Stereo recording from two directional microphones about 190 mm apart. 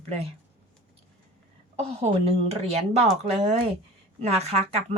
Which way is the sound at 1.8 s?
35° right (ahead or behind).